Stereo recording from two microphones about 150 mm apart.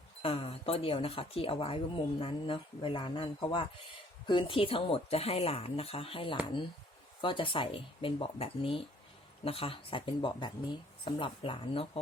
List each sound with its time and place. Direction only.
0.2 s speech: 40° left (ahead or behind)